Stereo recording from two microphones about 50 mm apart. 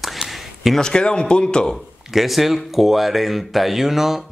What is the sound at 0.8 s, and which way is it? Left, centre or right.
Speech, centre.